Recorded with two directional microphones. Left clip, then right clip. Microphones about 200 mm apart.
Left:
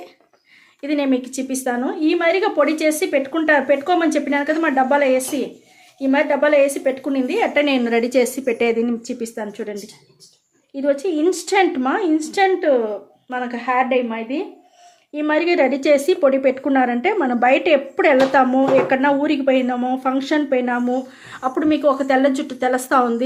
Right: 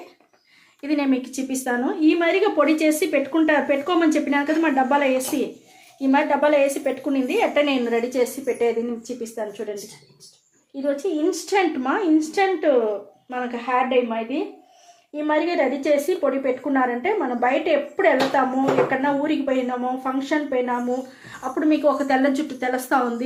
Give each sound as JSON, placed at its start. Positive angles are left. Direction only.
{"t": 0.8, "sound": "a woman's voice", "side_deg": 35}
{"t": 10.8, "sound": "speech", "side_deg": 45}
{"t": 15.1, "sound": "a woman's voice", "side_deg": 45}
{"t": 21.5, "sound": "speech", "side_deg": 40}